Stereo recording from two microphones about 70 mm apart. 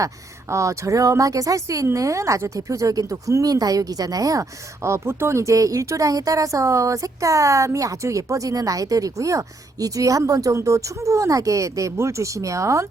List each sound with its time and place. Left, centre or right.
0.5 s a woman's voice: right
4.8 s a woman's voice: right